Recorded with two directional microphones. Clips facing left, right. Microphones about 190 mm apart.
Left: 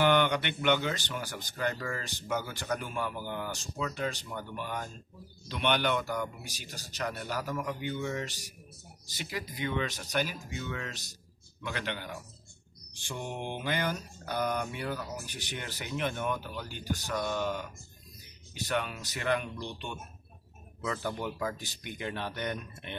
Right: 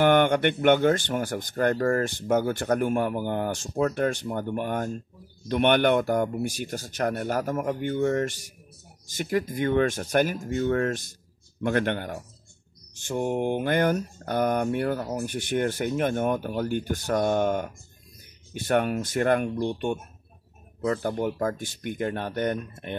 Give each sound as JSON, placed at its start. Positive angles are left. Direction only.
{"t": 0.0, "sound": "speech", "side_deg": -50}